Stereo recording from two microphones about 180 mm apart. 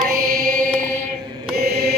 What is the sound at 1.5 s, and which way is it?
Mantra, 60° right (ahead or behind).